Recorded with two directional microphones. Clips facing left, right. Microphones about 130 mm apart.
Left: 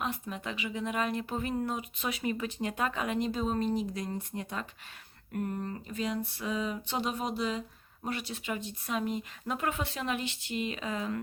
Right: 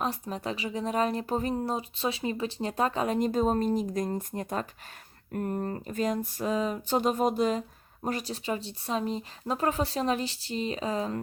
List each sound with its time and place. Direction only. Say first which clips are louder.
0.0 s speech: right 4 dB; 35° right (ahead or behind)
5.3 s a sound: right 4 dB; 40° right (ahead or behind)
8.0 s speech: right 4 dB; 40° right (ahead or behind)